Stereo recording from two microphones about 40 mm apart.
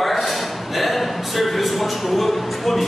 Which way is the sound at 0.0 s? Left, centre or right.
Centre.